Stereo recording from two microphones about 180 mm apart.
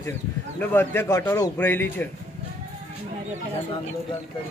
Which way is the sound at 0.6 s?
10° left (ahead or behind).